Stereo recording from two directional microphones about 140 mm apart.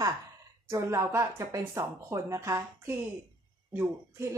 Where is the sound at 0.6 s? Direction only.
20° right (ahead or behind).